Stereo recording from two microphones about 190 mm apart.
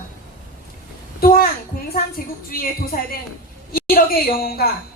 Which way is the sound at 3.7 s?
50° left (ahead or behind).